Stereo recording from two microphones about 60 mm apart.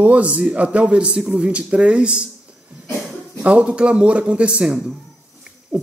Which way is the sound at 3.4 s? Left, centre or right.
Right.